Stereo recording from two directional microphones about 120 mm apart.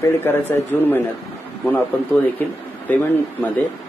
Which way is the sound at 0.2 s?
20° left (ahead or behind).